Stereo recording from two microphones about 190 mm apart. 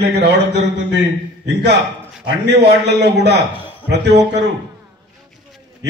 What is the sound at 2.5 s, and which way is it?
A man's voice, 60° right (ahead or behind).